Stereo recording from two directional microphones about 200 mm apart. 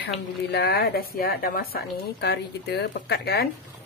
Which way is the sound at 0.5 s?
55° left (ahead or behind).